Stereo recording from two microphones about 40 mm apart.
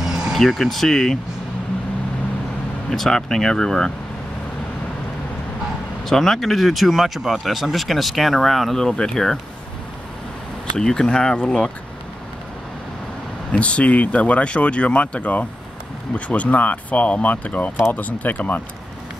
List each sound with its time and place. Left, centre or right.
0.0 s vehicle: centre
0.4 s speech: centre
2.9 s speech: centre
6.0 s speech: centre
10.8 s speech: centre
13.5 s speech: left